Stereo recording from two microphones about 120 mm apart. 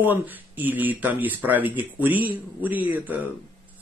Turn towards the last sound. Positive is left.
turn(degrees=-15)  # may be behind; listen again after turning